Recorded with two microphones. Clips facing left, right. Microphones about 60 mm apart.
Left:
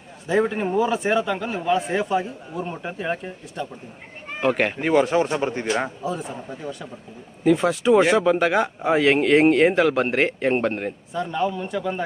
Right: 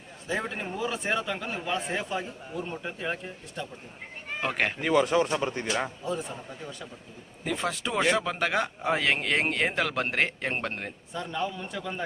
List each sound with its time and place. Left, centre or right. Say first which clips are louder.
0.3 s a man's voice: left 10 dB; centre
4.8 s speech: left 3 dB; left
6.1 s a man's voice: left 4 dB; centre